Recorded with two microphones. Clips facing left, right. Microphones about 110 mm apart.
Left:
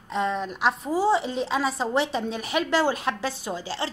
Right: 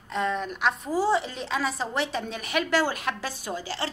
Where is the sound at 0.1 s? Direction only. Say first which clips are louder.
Left 1 dB; 20° left (ahead or behind).